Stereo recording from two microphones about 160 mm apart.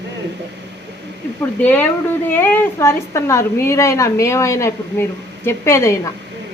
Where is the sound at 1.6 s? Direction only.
10° left (ahead or behind).